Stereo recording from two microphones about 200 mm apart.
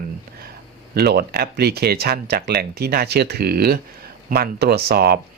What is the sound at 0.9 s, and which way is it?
Speech, 50° right (ahead or behind).